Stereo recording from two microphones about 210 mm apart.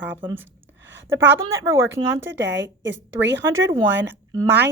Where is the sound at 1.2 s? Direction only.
55° right (ahead or behind).